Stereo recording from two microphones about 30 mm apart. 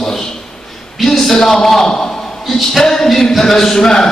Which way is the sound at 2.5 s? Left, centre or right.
Centre.